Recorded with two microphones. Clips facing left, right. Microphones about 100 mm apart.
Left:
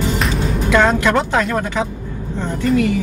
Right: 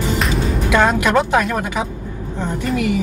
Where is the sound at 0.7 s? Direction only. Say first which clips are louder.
Left 1 dB; 15° right (ahead or behind).